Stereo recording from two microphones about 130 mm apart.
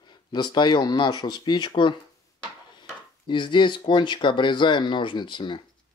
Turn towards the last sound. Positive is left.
turn(degrees=35)  # may be behind; listen again after turning